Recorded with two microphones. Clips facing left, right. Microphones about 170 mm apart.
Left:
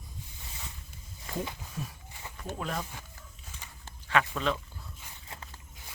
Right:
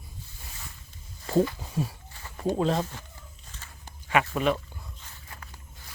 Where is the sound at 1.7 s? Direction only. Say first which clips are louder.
Right 9 dB; 30° right (ahead or behind).